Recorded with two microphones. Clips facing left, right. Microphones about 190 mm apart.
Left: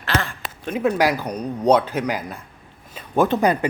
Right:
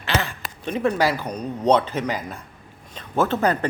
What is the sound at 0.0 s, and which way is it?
Speech, centre (ahead or behind).